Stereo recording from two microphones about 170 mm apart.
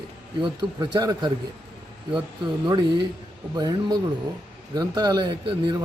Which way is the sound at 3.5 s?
25° right (ahead or behind).